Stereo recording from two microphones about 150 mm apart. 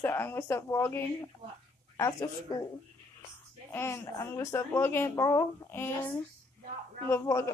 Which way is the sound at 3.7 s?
15° left (ahead or behind).